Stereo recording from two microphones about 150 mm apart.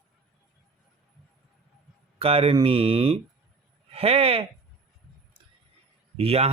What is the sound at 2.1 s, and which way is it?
A man's voice, 40° right (ahead or behind).